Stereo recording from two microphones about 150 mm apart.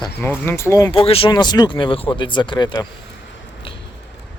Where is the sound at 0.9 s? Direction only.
35° left (ahead or behind).